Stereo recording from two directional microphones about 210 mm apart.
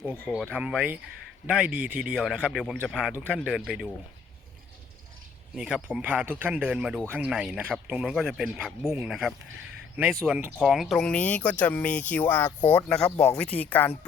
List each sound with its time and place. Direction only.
0.3 s speech: 5° right (ahead or behind)
5.5 s speech: 5° right (ahead or behind)